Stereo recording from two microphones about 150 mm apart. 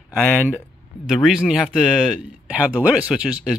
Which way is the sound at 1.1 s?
5° right (ahead or behind).